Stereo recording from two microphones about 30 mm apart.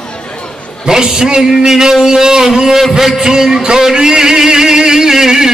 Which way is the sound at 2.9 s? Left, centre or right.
Centre.